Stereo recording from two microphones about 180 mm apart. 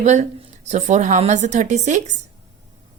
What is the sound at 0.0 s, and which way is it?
A woman's voice, 40° right (ahead or behind).